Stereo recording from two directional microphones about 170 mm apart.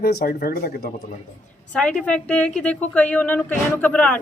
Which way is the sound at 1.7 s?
5° left (ahead or behind).